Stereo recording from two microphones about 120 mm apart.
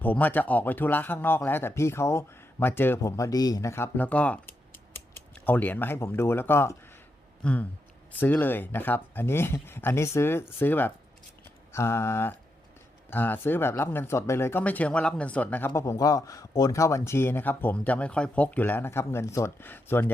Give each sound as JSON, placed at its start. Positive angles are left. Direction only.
{"t": 0.0, "sound": "speech", "side_deg": 15}